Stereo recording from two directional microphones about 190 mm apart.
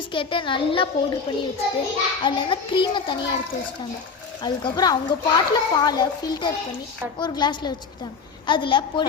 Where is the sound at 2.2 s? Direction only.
25° left (ahead or behind).